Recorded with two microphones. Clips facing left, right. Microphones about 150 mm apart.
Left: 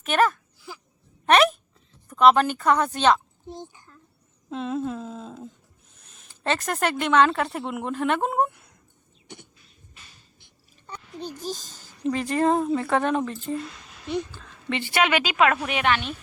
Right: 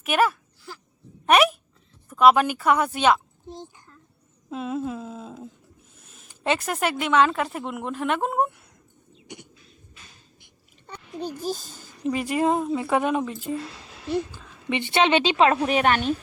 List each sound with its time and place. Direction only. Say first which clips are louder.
0.0 s speech: even; 10° right (ahead or behind)
4.4 s humming: left 1 dB; 5° right (ahead or behind)
6.0 s speech: right 1 dB; 5° right (ahead or behind)
11.2 s a woman's voice: right 4 dB; 10° right (ahead or behind); by 16.1 s 40° right (ahead or behind)